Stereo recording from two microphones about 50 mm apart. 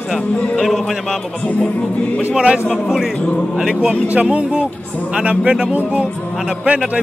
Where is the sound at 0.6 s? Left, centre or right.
Centre.